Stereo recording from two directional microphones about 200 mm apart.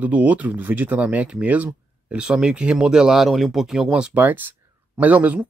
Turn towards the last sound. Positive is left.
turn(degrees=-10)  # may be behind; listen again after turning